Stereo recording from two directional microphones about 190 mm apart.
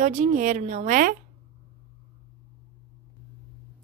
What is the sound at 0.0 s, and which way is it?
Speech, 40° right (ahead or behind).